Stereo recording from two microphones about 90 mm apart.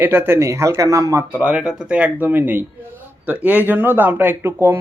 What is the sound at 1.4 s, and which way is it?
A man's voice, 10° right (ahead or behind).